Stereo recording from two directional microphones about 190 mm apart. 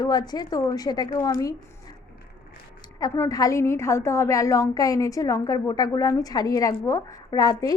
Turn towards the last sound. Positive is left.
turn(degrees=20)  # may be behind; listen again after turning